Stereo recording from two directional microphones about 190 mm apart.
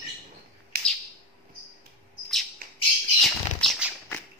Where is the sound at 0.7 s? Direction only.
55° right (ahead or behind).